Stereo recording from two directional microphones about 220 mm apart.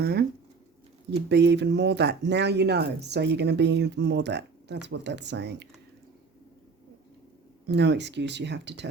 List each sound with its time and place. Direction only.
0.0 s speech: 45° right (ahead or behind)
1.3 s speech: 50° right (ahead or behind)
7.7 s speech: 50° right (ahead or behind)